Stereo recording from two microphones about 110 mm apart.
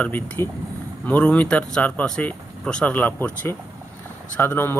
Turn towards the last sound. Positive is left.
turn(degrees=20)  # may be behind; listen again after turning